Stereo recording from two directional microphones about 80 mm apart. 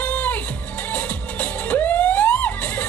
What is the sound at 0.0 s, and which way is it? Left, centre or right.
Music, centre.